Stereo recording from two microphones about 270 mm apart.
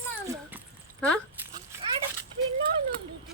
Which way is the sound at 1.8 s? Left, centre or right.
Centre.